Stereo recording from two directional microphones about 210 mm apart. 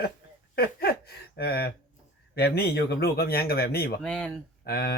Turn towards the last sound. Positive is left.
turn(degrees=50)  # may be behind; listen again after turning